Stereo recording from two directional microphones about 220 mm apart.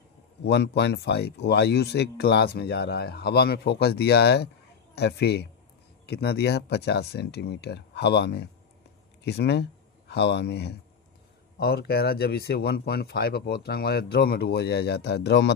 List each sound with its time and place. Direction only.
0.4 s speech: 50° left (ahead or behind)